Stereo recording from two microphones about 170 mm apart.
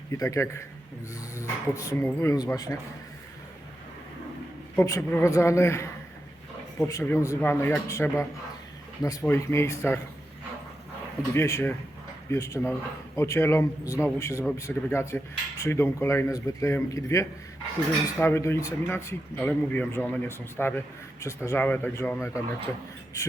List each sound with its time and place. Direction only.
0.1 s a man's voice: 20° left (ahead or behind)
4.8 s speech: 15° left (ahead or behind)
11.2 s speech: 15° left (ahead or behind)